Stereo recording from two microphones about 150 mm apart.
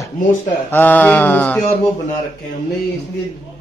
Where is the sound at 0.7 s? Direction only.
10° left (ahead or behind).